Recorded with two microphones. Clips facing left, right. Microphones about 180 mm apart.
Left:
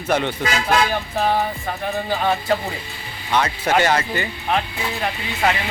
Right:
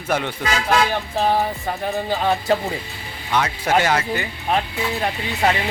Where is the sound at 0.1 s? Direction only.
5° right (ahead or behind).